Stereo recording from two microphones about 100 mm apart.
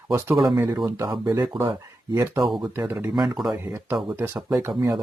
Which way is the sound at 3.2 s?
Centre (ahead or behind).